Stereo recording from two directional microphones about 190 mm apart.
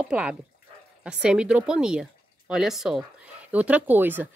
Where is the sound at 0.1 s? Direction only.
5° right (ahead or behind).